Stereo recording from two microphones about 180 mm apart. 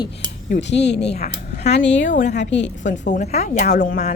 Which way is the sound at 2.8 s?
45° left (ahead or behind).